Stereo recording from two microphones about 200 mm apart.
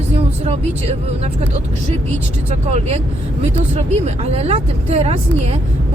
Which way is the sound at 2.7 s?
35° right (ahead or behind).